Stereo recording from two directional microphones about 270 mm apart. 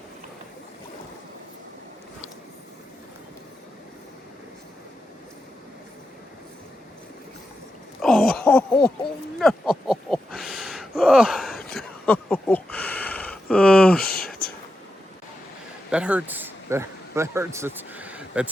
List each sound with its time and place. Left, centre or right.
8.0 s a sound: centre
14.0 s whispering: left
15.9 s speech: centre